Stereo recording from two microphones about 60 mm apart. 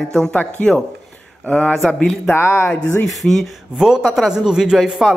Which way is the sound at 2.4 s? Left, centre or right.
Left.